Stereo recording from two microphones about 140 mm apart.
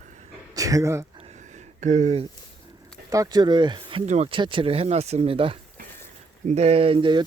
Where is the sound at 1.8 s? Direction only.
60° right (ahead or behind).